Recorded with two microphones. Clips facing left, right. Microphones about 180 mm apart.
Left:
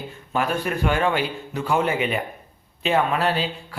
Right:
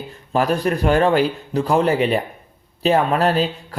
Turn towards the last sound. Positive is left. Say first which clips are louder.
# right 5 dB
turn(degrees=-40)  # may be behind; listen again after turning